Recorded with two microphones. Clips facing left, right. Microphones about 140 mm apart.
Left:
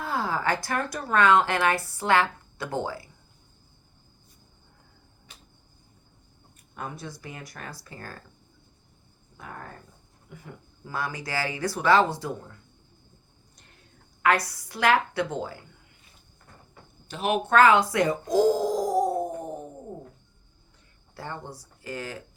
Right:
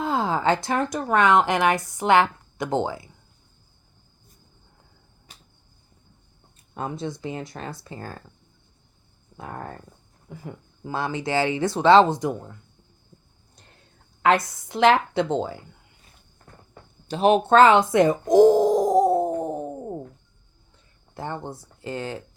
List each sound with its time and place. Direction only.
0.0 s a woman's voice: 20° right (ahead or behind)
6.7 s speech: 25° right (ahead or behind)
10.3 s speech: 30° right (ahead or behind)
14.2 s speech: 25° right (ahead or behind)
17.1 s speech: 30° right (ahead or behind)
21.2 s speech: 20° right (ahead or behind)